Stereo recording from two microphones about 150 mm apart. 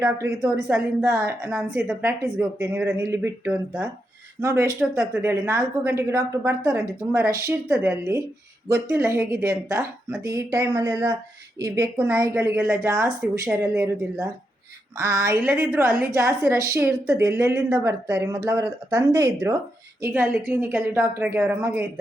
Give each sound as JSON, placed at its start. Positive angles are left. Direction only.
{"t": 0.0, "sound": "a woman's voice", "side_deg": -20}